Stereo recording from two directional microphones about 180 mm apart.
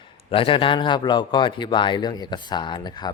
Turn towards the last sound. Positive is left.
turn(degrees=25)  # may be behind; listen again after turning